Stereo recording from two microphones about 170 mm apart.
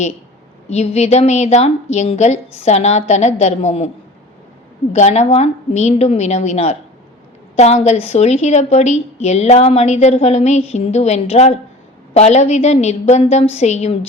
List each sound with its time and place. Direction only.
0.7 s a woman's voice: 40° left (ahead or behind)
4.9 s a woman's voice: 40° left (ahead or behind)